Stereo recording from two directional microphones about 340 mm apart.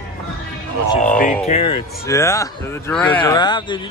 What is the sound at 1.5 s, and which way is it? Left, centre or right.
Speech, centre.